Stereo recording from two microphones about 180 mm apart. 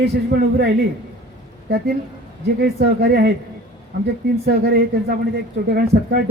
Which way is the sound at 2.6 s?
65° right (ahead or behind).